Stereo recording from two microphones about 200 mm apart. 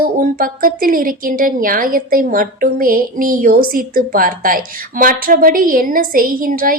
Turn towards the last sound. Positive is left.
turn(degrees=-45)  # may be behind; listen again after turning